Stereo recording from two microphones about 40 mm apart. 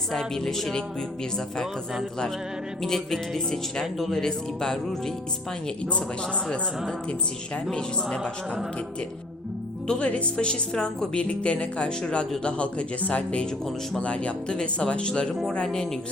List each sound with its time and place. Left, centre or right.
0.1 s speech: centre
2.8 s speech: centre
3.9 s speech: centre
4.2 s speech: centre
9.8 s speech: left
11.1 s speech: left